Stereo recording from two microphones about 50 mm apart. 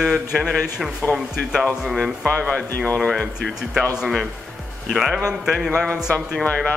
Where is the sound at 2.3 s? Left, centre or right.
Centre.